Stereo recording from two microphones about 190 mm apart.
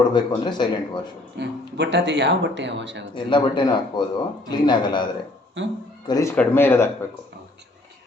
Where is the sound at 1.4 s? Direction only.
65° right (ahead or behind).